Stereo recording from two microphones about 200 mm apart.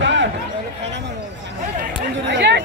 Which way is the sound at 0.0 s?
65° right (ahead or behind).